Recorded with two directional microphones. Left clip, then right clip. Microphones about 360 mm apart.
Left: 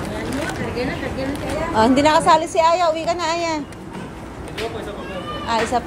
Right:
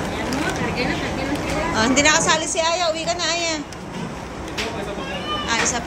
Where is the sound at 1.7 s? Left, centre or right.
Centre.